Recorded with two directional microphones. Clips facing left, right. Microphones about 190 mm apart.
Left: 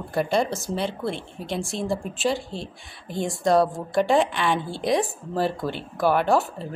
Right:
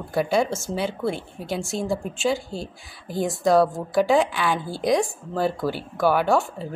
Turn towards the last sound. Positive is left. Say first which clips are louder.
# even
turn(degrees=0)  # may be behind; listen again after turning